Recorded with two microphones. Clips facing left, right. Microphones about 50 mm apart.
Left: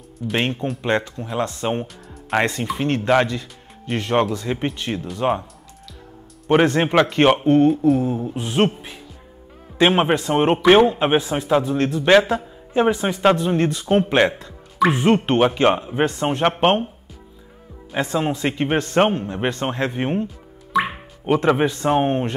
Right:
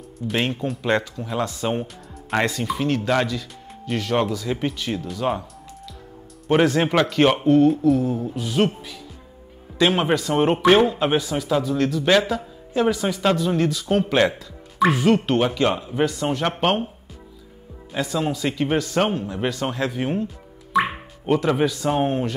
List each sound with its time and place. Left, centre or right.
0.4 s speech: left
1.1 s speech: centre
1.4 s speech: left
6.6 s speech: left
7.6 s speech: centre
8.1 s speech: left
17.9 s speech: left
21.3 s speech: left